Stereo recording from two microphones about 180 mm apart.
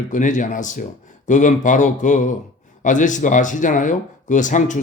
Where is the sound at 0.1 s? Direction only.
45° left (ahead or behind).